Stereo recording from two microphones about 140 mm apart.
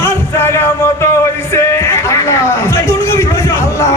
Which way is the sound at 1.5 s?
20° left (ahead or behind).